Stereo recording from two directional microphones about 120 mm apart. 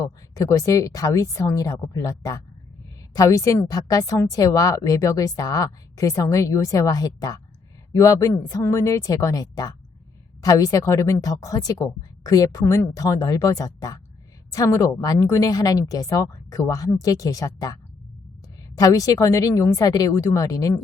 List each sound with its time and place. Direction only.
0.0 s a woman's voice: 30° left (ahead or behind)